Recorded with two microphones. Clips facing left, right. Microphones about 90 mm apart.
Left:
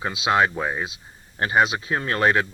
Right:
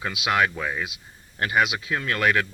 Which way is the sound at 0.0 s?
25° left (ahead or behind).